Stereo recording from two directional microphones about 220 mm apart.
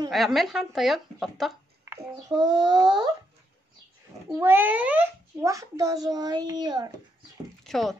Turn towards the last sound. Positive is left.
turn(degrees=0)  # may be behind; listen again after turning